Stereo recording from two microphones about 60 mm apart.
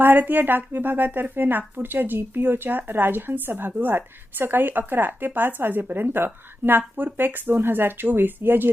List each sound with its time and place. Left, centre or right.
0.0 s speech: right